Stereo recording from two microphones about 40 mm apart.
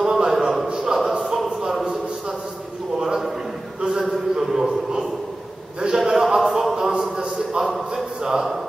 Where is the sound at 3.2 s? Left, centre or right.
Centre.